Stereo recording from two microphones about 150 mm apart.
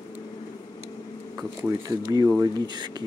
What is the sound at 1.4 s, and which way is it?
Speech, 20° right (ahead or behind).